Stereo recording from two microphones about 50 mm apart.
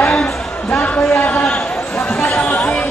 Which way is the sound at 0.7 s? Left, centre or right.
Left.